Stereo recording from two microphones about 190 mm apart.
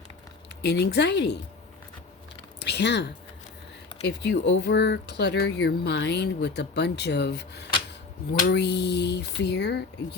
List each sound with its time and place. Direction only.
0.6 s speech: 60° left (ahead or behind)
2.6 s speech: 60° left (ahead or behind)